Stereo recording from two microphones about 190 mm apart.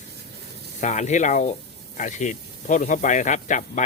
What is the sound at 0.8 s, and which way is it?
Speech, 40° left (ahead or behind).